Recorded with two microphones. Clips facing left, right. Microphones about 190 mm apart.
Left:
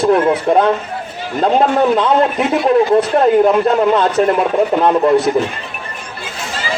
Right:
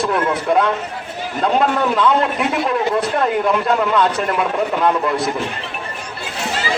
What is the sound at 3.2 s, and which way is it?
A man's voice, 35° left (ahead or behind).